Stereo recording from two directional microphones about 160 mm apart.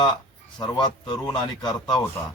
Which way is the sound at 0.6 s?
25° left (ahead or behind).